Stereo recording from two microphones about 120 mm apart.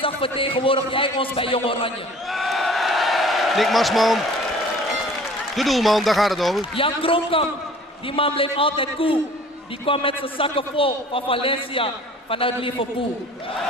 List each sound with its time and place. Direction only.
0.0 s a man's voice: 50° left (ahead or behind)
2.3 s a sound: centre (ahead or behind)
5.6 s speech: centre (ahead or behind)
6.7 s a man's voice: 50° left (ahead or behind)